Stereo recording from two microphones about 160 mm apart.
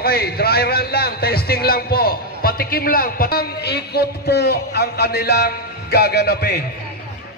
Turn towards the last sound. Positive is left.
turn(degrees=75)  # may be behind; listen again after turning